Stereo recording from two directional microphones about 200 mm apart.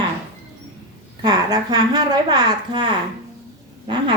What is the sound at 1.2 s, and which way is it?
A woman's voice, 20° right (ahead or behind).